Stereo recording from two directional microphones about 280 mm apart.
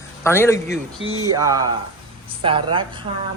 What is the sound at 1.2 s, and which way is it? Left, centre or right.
A woman's voice, centre.